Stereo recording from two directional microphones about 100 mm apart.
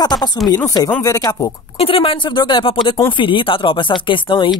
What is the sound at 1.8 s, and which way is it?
Speech, 65° left (ahead or behind).